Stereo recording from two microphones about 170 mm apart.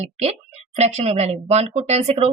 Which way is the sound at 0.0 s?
40° right (ahead or behind).